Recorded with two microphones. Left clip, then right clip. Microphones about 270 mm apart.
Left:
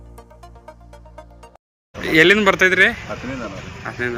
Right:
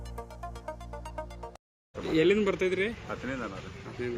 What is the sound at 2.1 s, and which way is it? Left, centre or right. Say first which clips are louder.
Speech: left 12 dB; left.